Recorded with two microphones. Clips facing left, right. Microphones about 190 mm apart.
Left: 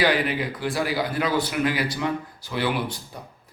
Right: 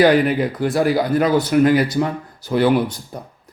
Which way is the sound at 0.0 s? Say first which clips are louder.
Right 8 dB; 45° right (ahead or behind).